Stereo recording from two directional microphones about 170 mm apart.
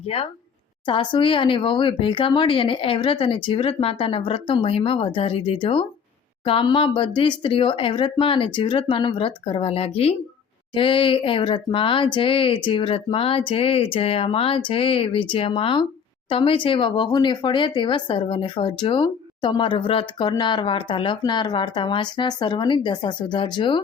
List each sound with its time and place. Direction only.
0.0 s speech: 35° left (ahead or behind)